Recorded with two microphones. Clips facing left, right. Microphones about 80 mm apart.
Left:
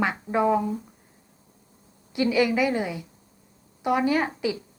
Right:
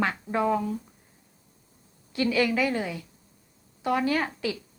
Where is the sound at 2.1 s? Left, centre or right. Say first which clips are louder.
Left 2 dB; centre.